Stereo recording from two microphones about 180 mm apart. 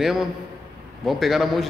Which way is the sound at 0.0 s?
Centre (ahead or behind).